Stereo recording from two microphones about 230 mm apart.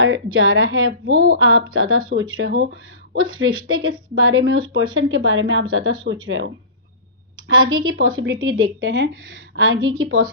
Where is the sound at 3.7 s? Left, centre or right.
Right.